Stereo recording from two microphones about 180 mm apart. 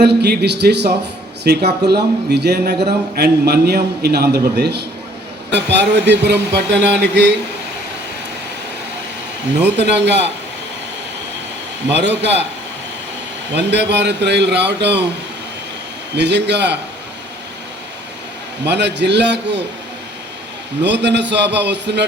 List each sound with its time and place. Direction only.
0.0 s speech: 65° right (ahead or behind)
9.5 s speech: 70° right (ahead or behind)
11.9 s speech: 75° right (ahead or behind)
13.5 s speech: 70° right (ahead or behind)
16.1 s speech: 70° right (ahead or behind)
18.6 s speech: 70° right (ahead or behind)
20.8 s speech: 75° right (ahead or behind)